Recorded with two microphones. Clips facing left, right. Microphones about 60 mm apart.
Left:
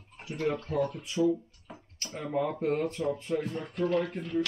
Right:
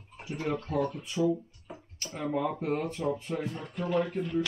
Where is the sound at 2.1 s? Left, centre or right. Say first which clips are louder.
Even; centre.